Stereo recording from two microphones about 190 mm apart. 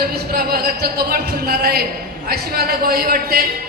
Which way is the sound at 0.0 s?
55° right (ahead or behind).